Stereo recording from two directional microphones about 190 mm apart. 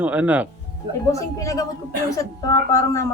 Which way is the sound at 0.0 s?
10° right (ahead or behind).